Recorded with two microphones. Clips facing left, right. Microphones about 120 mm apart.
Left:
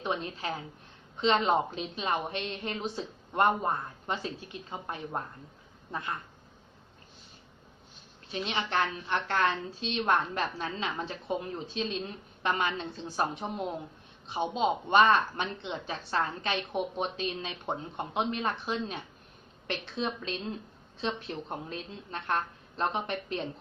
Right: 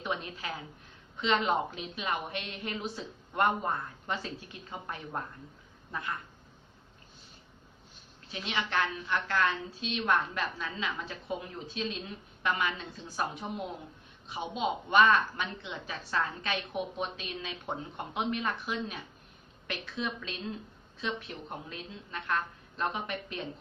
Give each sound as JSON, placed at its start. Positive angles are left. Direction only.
{"t": 0.0, "sound": "a woman's voice", "side_deg": 30}
{"t": 8.3, "sound": "a woman's voice", "side_deg": 30}